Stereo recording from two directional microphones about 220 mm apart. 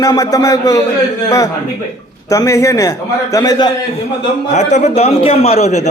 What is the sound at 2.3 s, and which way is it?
A man's voice, 15° left (ahead or behind).